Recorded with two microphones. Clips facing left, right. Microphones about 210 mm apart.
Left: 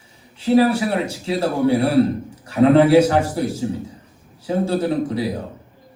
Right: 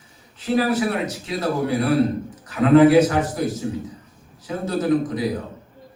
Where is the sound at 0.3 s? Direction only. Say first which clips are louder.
Left 5 dB; 30° left (ahead or behind).